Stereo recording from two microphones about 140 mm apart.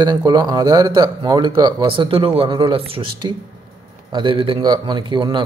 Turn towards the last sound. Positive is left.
turn(degrees=-35)  # may be behind; listen again after turning